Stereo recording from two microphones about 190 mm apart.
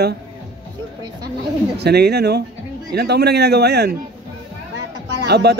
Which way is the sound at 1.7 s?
60° right (ahead or behind).